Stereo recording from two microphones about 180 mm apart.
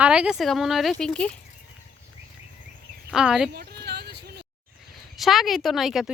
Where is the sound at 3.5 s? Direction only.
65° right (ahead or behind).